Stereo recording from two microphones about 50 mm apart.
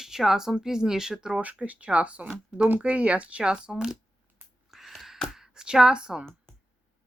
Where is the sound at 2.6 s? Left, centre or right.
Right.